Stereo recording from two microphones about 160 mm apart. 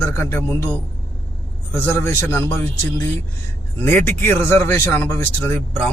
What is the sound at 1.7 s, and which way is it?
Speech, 15° left (ahead or behind).